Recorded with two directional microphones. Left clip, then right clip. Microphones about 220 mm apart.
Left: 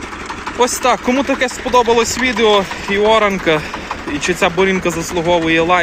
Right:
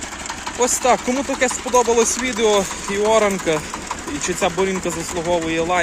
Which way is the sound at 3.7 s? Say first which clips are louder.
Left 4 dB; 60° right (ahead or behind).